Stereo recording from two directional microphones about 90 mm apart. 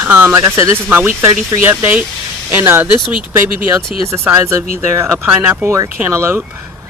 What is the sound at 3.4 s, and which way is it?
Speech, 30° right (ahead or behind).